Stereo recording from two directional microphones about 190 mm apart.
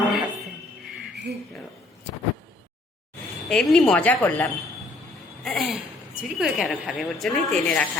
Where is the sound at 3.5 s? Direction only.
5° left (ahead or behind).